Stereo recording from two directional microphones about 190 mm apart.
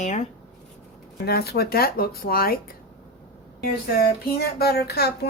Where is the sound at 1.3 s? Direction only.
55° left (ahead or behind).